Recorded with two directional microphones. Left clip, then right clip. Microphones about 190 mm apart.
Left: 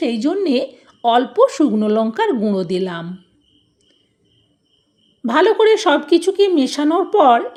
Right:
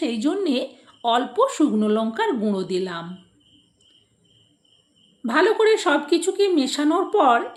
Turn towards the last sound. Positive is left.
turn(degrees=30)  # may be behind; listen again after turning